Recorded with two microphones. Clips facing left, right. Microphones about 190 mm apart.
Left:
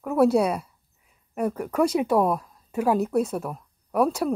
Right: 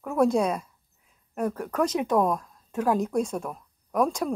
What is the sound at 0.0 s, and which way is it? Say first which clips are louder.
Speech: left 3 dB; 5° left (ahead or behind).